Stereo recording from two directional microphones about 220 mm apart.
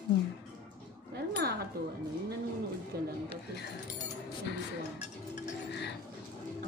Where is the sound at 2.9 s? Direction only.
45° right (ahead or behind).